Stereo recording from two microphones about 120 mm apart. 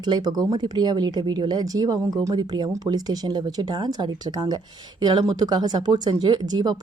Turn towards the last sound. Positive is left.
turn(degrees=-35)  # may be behind; listen again after turning